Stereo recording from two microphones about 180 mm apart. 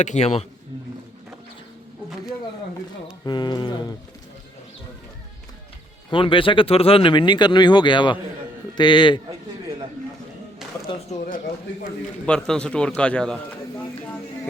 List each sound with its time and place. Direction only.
0.0 s speech: 40° left (ahead or behind)
3.2 s speech: 25° left (ahead or behind)
6.1 s speech: 30° left (ahead or behind)
10.9 s speech: 25° left (ahead or behind)
12.2 s speech: 5° left (ahead or behind)